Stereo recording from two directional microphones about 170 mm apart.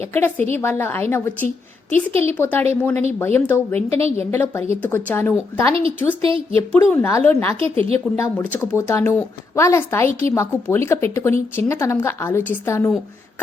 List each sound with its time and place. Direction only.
0.0 s speech: 15° left (ahead or behind)
3.8 s a woman's voice: 35° right (ahead or behind)
4.3 s speech: 15° left (ahead or behind)
6.2 s a woman's voice: 30° right (ahead or behind)
6.7 s speech: 10° left (ahead or behind)
7.5 s a woman's voice: 35° right (ahead or behind)
8.1 s speech: 15° left (ahead or behind)